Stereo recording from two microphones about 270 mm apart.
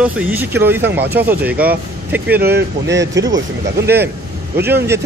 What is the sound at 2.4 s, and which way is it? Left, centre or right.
Speech, right.